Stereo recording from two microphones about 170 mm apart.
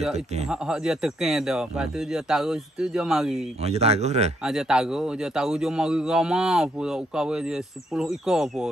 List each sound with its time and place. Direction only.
0.5 s a man's voice: 5° right (ahead or behind)
3.6 s speech: 40° right (ahead or behind)
4.4 s a man's voice: 5° right (ahead or behind)